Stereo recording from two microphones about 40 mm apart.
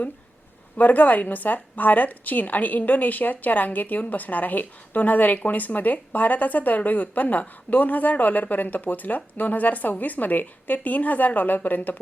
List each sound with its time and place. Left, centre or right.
0.8 s a woman's voice: left